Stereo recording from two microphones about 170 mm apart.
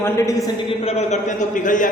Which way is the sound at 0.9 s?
40° left (ahead or behind).